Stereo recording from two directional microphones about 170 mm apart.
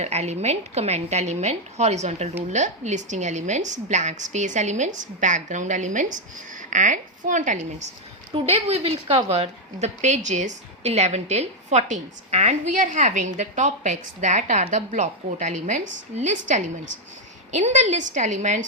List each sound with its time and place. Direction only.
0.0 s a woman's voice: 40° right (ahead or behind)
17.5 s a woman's voice: 45° right (ahead or behind)